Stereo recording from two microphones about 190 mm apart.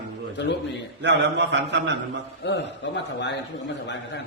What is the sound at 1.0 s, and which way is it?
A man's voice, 65° right (ahead or behind).